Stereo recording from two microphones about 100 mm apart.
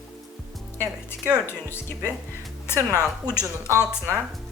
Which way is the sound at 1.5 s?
25° left (ahead or behind).